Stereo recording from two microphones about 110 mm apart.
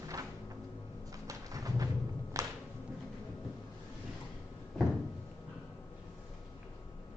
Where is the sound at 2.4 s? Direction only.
30° right (ahead or behind).